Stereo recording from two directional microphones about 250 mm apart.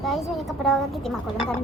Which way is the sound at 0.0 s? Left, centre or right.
Centre.